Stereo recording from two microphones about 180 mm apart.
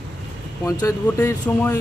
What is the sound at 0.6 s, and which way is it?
Speech, 15° left (ahead or behind).